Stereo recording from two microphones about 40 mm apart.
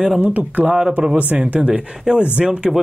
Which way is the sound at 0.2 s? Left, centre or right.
Right.